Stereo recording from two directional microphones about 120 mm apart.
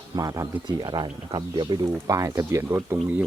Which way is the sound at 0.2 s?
30° right (ahead or behind).